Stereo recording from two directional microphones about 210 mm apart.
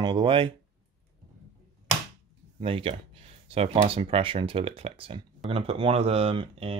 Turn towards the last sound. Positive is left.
turn(degrees=-25)  # may be behind; listen again after turning